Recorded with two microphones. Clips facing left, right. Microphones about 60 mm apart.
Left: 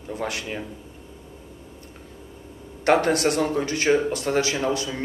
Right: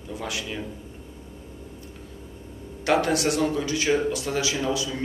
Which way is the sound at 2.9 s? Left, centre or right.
Left.